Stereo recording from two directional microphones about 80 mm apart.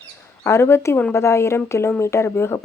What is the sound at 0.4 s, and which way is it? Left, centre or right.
Speech, left.